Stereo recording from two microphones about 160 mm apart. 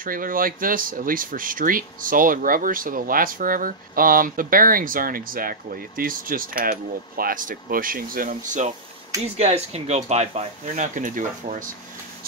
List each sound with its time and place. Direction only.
0.0 s speech: 60° right (ahead or behind)
9.2 s speech: 40° right (ahead or behind)